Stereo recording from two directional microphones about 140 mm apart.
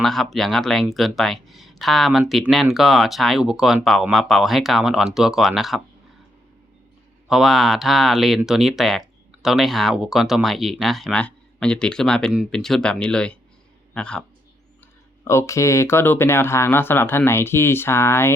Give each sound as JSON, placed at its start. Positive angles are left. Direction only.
{"t": 0.0, "sound": "speech", "side_deg": 0}
{"t": 7.3, "sound": "speech", "side_deg": -5}
{"t": 15.2, "sound": "speech", "side_deg": 20}